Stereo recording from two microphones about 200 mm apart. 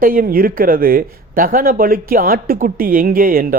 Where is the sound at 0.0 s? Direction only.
45° right (ahead or behind).